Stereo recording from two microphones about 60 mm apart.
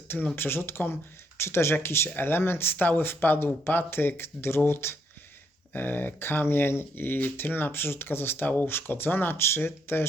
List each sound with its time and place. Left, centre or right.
0.3 s speech: left
5.7 s speech: left